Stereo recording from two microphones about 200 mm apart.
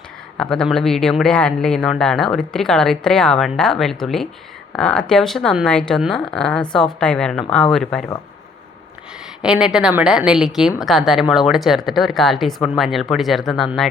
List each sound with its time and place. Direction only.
0.3 s a woman's voice: 5° left (ahead or behind)
9.4 s a woman's voice: 5° right (ahead or behind)